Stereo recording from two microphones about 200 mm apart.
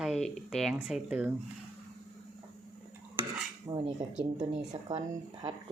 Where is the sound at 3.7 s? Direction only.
20° right (ahead or behind).